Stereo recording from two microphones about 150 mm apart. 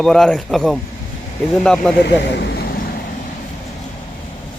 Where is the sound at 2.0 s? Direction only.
90° left.